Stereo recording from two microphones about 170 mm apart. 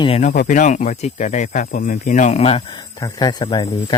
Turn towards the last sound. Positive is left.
turn(degrees=25)  # may be behind; listen again after turning